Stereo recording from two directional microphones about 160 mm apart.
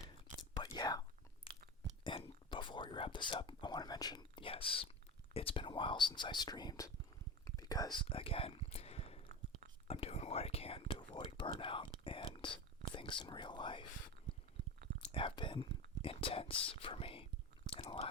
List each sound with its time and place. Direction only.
0.0 s whispering: 30° left (ahead or behind)
2.0 s whispering: 35° left (ahead or behind)
5.3 s speech: 35° left (ahead or behind)
7.4 s whispering: 20° left (ahead or behind)
12.9 s speech: 30° left (ahead or behind)
15.1 s whispering: 30° left (ahead or behind)
16.6 s speech: 35° left (ahead or behind)
17.7 s whispering: 30° left (ahead or behind)